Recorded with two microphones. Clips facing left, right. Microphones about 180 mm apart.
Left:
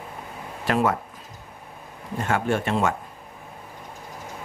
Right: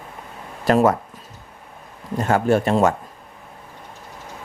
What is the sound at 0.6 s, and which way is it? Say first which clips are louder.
Speech: right 6 dB; 40° right (ahead or behind).